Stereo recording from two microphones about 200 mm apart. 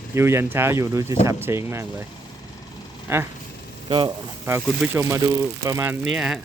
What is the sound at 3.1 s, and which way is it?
Speech, 15° right (ahead or behind).